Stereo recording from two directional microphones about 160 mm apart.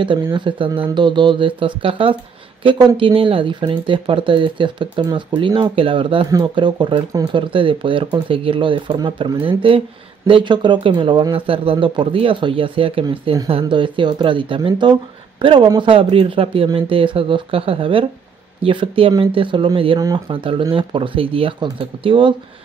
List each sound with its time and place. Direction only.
0.0 s speech: 30° right (ahead or behind)
20.0 s speech: 20° right (ahead or behind)
20.3 s speech: 35° right (ahead or behind)